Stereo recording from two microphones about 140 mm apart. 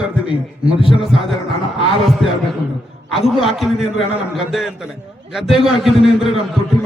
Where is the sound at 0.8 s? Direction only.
40° left (ahead or behind).